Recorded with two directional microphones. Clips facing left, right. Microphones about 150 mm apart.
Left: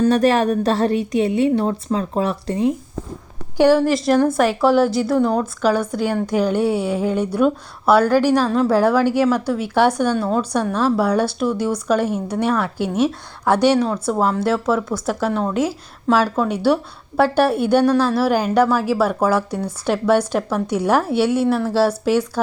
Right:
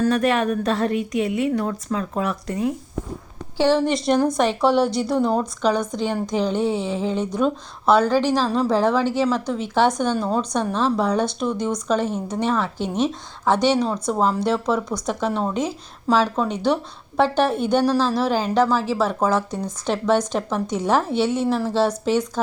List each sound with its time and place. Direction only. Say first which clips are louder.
0.0 s a woman's voice: left 4 dB; 35° left (ahead or behind)
3.6 s a woman's voice: left 4 dB; 10° left (ahead or behind)